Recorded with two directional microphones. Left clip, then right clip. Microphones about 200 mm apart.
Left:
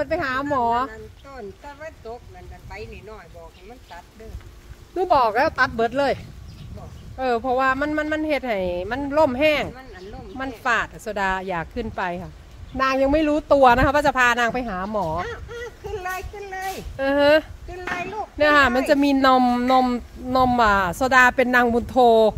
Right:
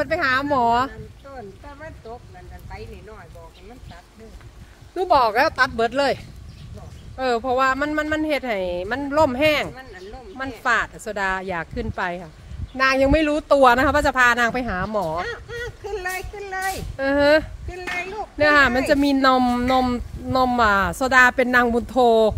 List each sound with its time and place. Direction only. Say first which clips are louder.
0.0 s speech: right 3 dB; 15° right (ahead or behind)
4.9 s speech: right 1 dB; 15° right (ahead or behind)
15.1 s a sound: right 1 dB; 35° right (ahead or behind)
16.9 s speech: even; 5° left (ahead or behind)